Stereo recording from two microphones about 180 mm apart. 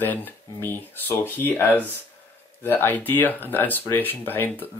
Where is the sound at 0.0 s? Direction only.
10° left (ahead or behind).